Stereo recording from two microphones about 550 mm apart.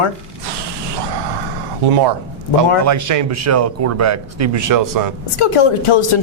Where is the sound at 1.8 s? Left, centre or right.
Right.